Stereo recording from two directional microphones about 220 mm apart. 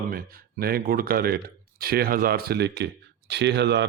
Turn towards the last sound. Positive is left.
turn(degrees=-50)  # may be behind; listen again after turning